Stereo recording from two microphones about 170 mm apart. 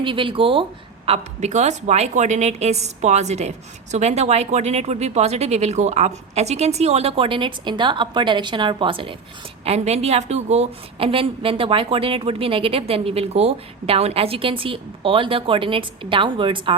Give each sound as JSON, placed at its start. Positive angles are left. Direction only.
{"t": 0.0, "sound": "a woman's voice", "side_deg": -30}